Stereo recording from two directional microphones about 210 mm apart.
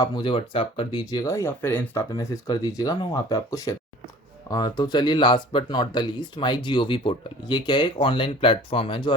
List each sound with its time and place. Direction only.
0.0 s speech: 20° left (ahead or behind)